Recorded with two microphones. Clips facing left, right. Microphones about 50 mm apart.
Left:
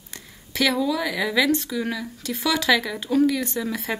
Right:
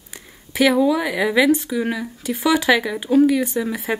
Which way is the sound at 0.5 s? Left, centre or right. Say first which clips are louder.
Right 6 dB; centre.